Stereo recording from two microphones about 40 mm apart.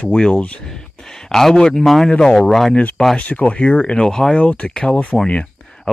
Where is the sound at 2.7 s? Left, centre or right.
Left.